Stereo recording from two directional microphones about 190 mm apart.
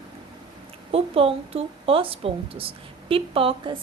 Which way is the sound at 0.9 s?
30° right (ahead or behind).